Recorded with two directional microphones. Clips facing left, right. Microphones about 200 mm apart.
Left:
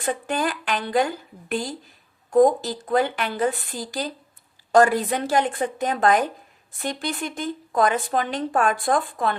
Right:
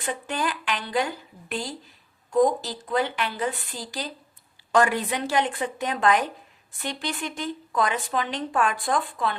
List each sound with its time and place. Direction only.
0.0 s a woman's voice: 45° left (ahead or behind)
2.3 s a woman's voice: 50° left (ahead or behind)